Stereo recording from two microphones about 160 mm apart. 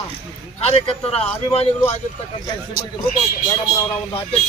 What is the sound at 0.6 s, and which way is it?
Speech, 40° left (ahead or behind).